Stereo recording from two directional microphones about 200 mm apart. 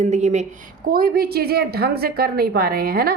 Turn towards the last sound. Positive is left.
turn(degrees=-50)  # may be behind; listen again after turning